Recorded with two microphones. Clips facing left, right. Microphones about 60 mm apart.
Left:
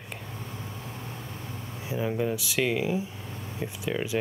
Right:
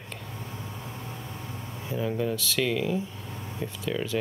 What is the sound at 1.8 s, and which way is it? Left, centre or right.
Speech, centre.